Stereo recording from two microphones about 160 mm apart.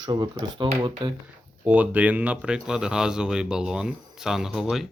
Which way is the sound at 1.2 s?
10° right (ahead or behind).